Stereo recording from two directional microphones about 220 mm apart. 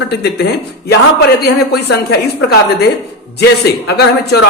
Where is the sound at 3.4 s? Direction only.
45° left (ahead or behind).